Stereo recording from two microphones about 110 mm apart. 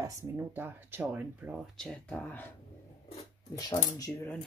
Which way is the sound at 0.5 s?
20° right (ahead or behind).